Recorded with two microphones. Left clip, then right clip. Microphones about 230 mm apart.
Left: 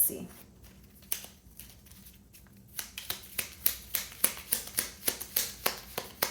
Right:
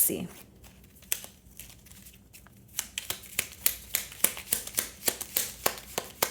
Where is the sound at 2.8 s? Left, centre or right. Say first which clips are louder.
Right 4 dB; right.